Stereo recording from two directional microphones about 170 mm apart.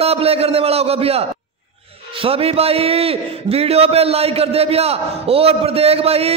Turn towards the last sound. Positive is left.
turn(degrees=-35)  # may be behind; listen again after turning